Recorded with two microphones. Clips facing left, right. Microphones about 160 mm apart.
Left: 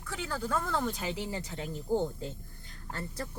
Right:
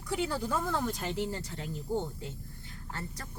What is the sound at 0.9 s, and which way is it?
Speech, 5° left (ahead or behind).